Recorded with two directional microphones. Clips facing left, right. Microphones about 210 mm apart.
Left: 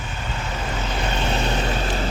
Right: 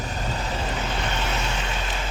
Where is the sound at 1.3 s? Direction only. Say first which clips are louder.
Left 6 dB; 30° left (ahead or behind).